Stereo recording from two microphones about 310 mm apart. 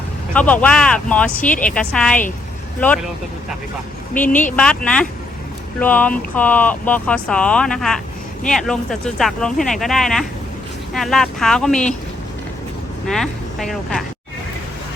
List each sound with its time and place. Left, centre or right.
0.3 s speech: centre
1.5 s a woman's voice: left
1.7 s speech: centre
4.2 s speech: centre
13.1 s speech: centre